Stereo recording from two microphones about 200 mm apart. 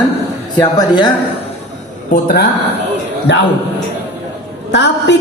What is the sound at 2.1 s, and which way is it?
Speech, 50° left (ahead or behind).